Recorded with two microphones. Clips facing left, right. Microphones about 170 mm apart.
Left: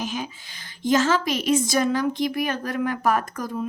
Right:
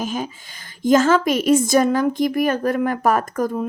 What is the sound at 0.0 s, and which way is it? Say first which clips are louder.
Speech: right 4 dB; 45° right (ahead or behind).